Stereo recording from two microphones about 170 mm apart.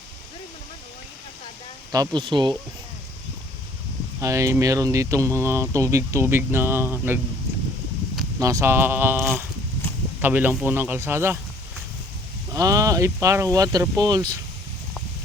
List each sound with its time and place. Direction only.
1.9 s speech: 25° right (ahead or behind)
4.2 s speech: 20° right (ahead or behind)
8.4 s speech: 20° right (ahead or behind)
12.5 s speech: 20° right (ahead or behind)